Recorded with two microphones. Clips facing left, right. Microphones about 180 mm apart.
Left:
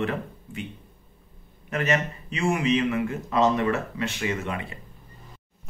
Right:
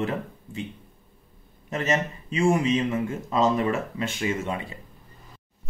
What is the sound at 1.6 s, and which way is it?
A man's voice, 25° right (ahead or behind).